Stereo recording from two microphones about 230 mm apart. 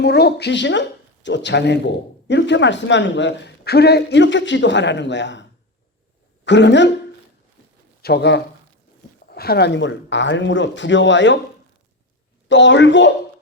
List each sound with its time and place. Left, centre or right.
0.0 s speech: left
8.0 s speech: left
12.5 s speech: left